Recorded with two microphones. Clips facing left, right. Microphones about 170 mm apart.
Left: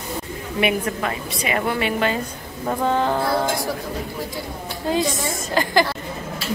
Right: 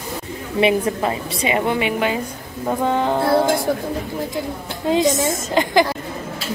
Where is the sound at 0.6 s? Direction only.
25° right (ahead or behind).